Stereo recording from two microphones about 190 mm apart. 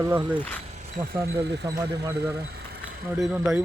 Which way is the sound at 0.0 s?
15° right (ahead or behind).